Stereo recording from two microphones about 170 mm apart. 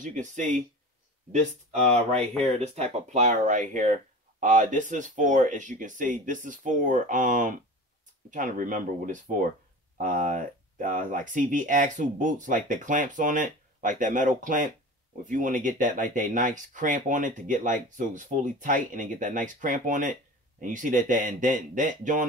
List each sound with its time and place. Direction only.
0.0 s speech: 45° right (ahead or behind)
2.6 s speech: 40° right (ahead or behind)